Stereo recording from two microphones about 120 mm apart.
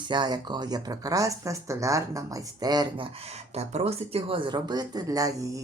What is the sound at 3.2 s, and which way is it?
Speech, 60° right (ahead or behind).